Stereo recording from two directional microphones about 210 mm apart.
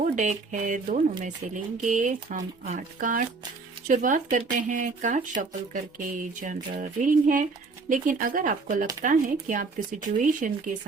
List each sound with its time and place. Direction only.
0.0 s speech: 35° right (ahead or behind)